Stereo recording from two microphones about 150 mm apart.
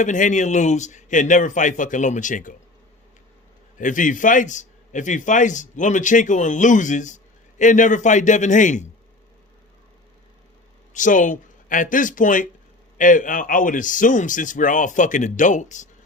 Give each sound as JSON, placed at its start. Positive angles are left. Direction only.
{"t": 0.0, "sound": "a man's voice", "side_deg": 55}
{"t": 3.8, "sound": "a man's voice", "side_deg": 60}
{"t": 10.9, "sound": "a man's voice", "side_deg": 60}